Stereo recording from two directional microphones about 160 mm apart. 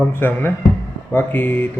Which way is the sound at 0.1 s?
15° left (ahead or behind).